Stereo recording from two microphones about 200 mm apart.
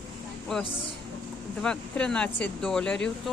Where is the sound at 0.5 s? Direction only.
5° left (ahead or behind).